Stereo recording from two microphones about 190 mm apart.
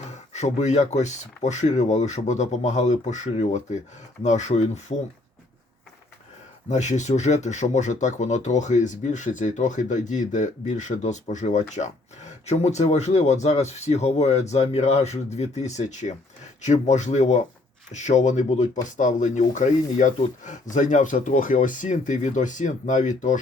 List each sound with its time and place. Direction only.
0.3 s speech: 35° left (ahead or behind)
6.7 s speech: 40° left (ahead or behind)